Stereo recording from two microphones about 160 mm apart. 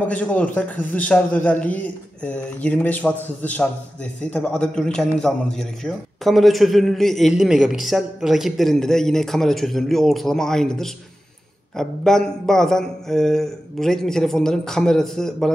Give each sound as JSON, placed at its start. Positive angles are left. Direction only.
{"t": 0.0, "sound": "a man's voice", "side_deg": 10}